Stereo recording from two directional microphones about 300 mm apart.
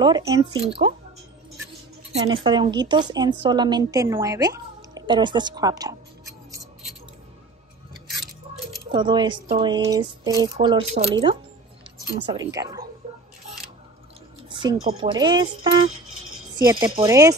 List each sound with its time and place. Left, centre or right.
0.0 s a woman's voice: centre
2.1 s a woman's voice: centre
8.5 s keys jangling: centre
8.9 s a woman's voice: centre
12.4 s a woman's voice: centre
14.5 s a woman's voice: centre